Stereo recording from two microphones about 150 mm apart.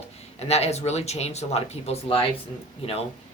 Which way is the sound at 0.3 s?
45° left (ahead or behind).